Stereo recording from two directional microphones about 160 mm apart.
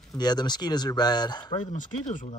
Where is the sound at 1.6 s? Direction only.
50° left (ahead or behind).